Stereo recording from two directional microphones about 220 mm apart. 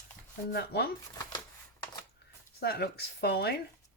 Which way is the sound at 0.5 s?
45° left (ahead or behind).